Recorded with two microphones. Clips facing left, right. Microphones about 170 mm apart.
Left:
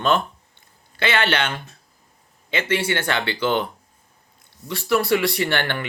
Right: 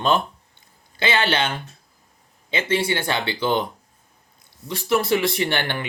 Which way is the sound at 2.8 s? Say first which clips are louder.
Even; 10° right (ahead or behind).